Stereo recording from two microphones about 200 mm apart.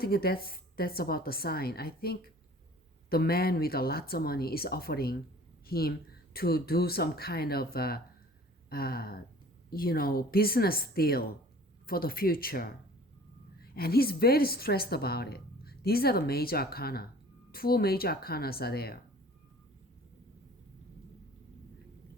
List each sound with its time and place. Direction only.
0.0 s a woman's voice: 50° left (ahead or behind)